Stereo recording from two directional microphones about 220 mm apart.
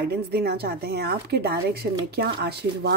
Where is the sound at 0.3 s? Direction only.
45° right (ahead or behind).